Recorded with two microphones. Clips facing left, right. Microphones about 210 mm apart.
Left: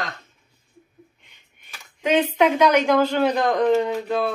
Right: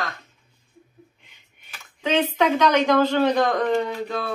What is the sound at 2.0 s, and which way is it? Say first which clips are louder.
A woman's voice: left 2 dB; 10° left (ahead or behind).